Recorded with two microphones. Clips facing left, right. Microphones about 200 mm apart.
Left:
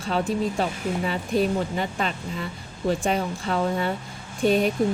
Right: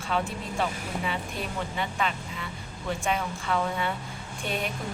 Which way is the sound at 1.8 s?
40° left (ahead or behind).